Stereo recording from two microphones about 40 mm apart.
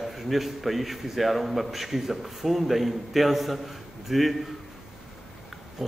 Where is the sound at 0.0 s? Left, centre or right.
Centre.